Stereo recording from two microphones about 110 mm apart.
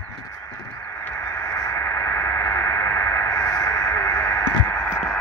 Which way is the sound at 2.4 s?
25° left (ahead or behind).